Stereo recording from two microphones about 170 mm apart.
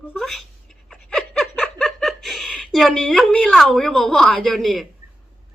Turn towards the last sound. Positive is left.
turn(degrees=0)  # may be behind; listen again after turning